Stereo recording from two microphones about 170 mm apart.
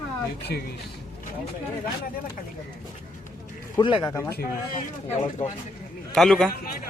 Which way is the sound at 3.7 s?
20° left (ahead or behind).